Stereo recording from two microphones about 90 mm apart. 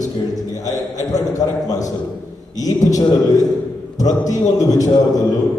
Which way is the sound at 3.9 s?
40° left (ahead or behind).